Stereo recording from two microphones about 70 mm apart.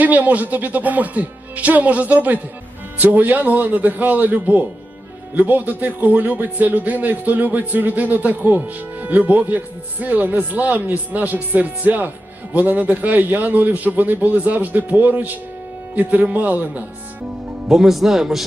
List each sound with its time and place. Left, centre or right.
0.0 s a man's voice: right
17.7 s speech: centre